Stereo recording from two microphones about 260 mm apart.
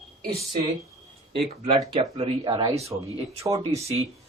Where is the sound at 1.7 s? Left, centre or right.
Right.